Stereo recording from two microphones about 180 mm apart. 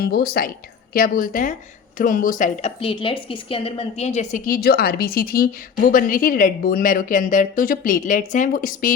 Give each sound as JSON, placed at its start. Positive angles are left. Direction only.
{"t": 0.0, "sound": "a woman's voice", "side_deg": 60}